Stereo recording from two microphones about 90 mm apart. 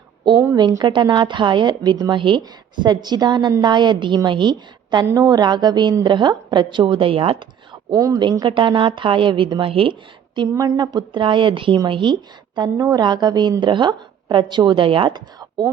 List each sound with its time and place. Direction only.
0.9 s a woman's voice: 60° right (ahead or behind)
2.8 s a woman's voice: 55° right (ahead or behind); by 7.8 s 80° right
7.9 s a woman's voice: 40° right (ahead or behind)
8.2 s speech: 55° right (ahead or behind); by 9.9 s 85° right
10.5 s a woman's voice: 40° right (ahead or behind)
10.8 s a woman's voice: 60° right (ahead or behind)
12.7 s a woman's voice: 35° right (ahead or behind)
13.0 s a woman's voice: 50° right (ahead or behind); by 15.2 s 70° right (ahead or behind)
15.4 s speech: 50° right (ahead or behind)